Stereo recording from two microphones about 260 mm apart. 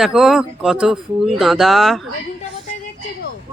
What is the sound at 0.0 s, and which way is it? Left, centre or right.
A woman's voice, centre.